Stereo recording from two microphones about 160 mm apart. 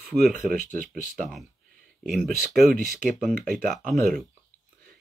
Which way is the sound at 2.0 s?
Centre (ahead or behind).